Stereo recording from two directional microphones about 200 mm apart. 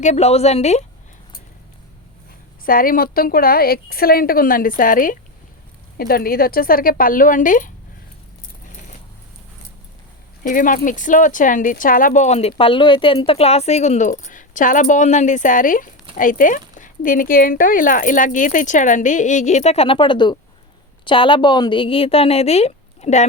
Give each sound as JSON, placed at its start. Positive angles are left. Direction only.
{"t": 0.0, "sound": "speech", "side_deg": 35}
{"t": 2.6, "sound": "a woman's voice", "side_deg": 45}
{"t": 10.4, "sound": "a woman's voice", "side_deg": 40}